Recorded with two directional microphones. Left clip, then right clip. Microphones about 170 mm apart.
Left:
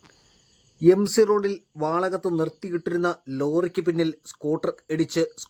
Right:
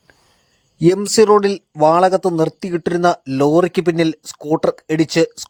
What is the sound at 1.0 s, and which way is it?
Speech, 40° right (ahead or behind).